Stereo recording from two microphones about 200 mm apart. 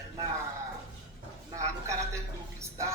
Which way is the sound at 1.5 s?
15° right (ahead or behind).